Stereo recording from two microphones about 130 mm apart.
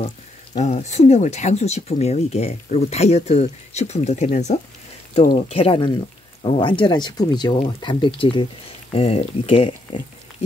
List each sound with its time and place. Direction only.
0.6 s speech: 60° left (ahead or behind)
5.3 s speech: 45° left (ahead or behind)